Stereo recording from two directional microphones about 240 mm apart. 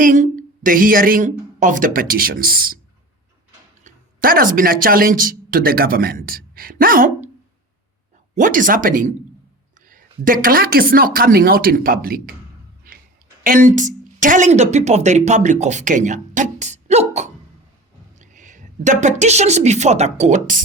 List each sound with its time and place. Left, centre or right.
0.0 s a woman's voice: right
3.8 s speech: right
8.4 s speech: right
13.4 s a woman's voice: right